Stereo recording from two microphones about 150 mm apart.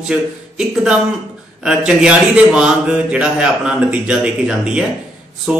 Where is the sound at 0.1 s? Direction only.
5° right (ahead or behind).